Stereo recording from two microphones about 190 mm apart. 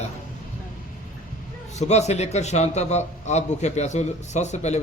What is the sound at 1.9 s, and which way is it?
A man's voice, 35° left (ahead or behind).